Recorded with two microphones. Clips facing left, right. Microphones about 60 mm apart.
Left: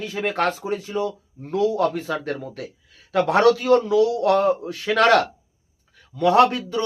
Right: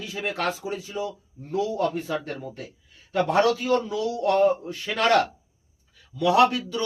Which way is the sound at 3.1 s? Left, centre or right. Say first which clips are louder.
Left 4 dB; left.